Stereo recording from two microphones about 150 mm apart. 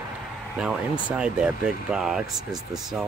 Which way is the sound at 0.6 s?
5° right (ahead or behind).